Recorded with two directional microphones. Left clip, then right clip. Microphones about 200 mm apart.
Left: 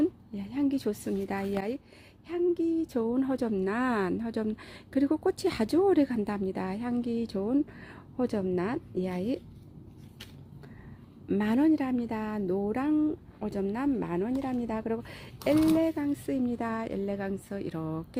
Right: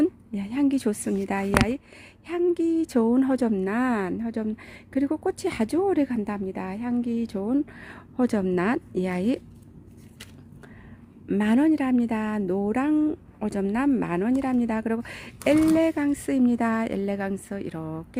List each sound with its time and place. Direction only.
0.0 s speech: 30° right (ahead or behind)
11.3 s a woman's voice: 15° right (ahead or behind)